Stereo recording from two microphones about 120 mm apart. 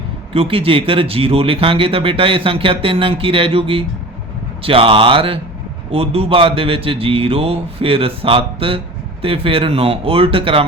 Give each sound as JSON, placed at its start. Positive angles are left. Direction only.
{"t": 0.3, "sound": "speech", "side_deg": -50}